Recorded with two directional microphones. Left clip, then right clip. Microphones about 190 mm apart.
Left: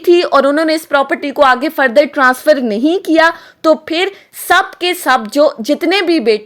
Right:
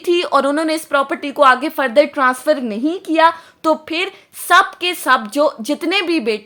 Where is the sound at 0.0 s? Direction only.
15° left (ahead or behind).